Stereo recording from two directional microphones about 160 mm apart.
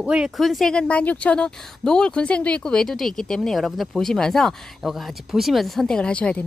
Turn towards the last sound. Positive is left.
turn(degrees=5)  # may be behind; listen again after turning